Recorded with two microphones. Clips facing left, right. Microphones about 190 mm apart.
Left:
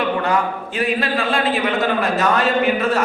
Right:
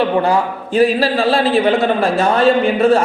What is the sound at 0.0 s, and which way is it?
A man's voice, 30° right (ahead or behind).